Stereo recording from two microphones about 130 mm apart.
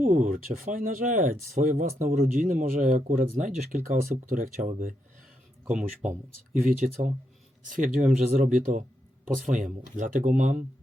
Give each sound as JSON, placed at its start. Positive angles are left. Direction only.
{"t": 0.0, "sound": "speech", "side_deg": -90}
{"t": 6.0, "sound": "speech", "side_deg": -75}
{"t": 6.7, "sound": "speech", "side_deg": -90}